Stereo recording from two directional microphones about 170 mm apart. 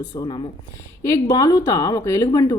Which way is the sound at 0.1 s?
30° left (ahead or behind).